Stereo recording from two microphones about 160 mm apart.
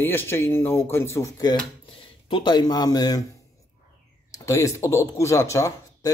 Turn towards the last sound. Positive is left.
turn(degrees=20)  # may be behind; listen again after turning